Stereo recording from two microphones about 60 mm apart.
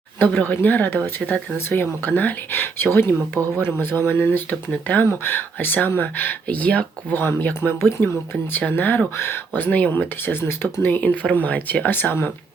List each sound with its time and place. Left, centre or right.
0.2 s speech: left
11.0 s speech: left